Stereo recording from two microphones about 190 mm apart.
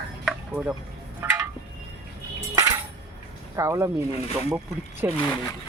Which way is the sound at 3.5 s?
15° right (ahead or behind).